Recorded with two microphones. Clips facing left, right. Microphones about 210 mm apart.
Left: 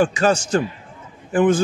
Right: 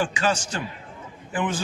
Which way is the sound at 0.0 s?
40° left (ahead or behind).